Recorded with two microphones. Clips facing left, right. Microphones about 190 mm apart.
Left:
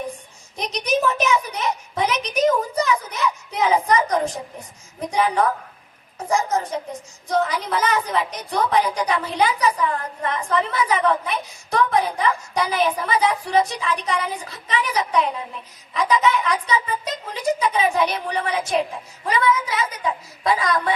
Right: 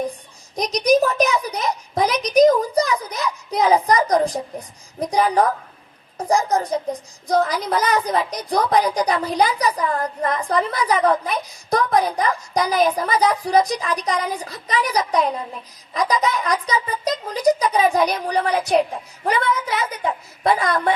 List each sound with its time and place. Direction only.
0.5 s a woman's voice: 35° right (ahead or behind)
19.2 s a woman's voice: 55° right (ahead or behind)